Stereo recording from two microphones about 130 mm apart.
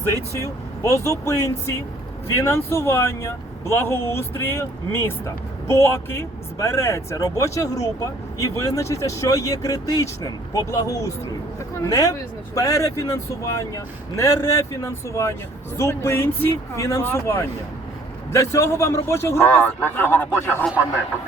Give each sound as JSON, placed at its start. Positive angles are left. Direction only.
{"t": 0.1, "sound": "speech", "side_deg": 20}